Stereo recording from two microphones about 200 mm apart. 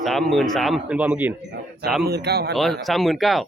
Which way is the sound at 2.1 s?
55° right (ahead or behind).